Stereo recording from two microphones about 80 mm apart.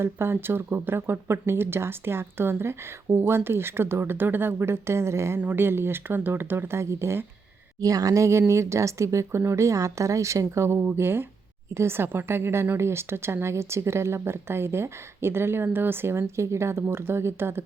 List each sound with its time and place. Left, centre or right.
0.0 s a woman's voice: right
5.4 s speech: right
7.8 s a woman's voice: right